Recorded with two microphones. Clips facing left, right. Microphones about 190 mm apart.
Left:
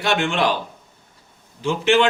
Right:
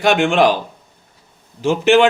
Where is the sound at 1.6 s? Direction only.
70° right (ahead or behind).